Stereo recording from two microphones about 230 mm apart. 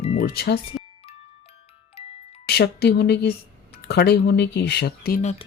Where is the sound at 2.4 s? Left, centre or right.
Left.